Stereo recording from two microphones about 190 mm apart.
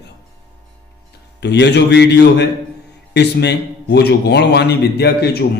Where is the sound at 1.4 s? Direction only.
65° left (ahead or behind).